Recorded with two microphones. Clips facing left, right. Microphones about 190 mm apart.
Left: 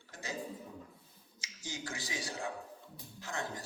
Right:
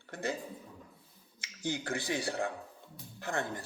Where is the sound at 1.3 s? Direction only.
60° right (ahead or behind).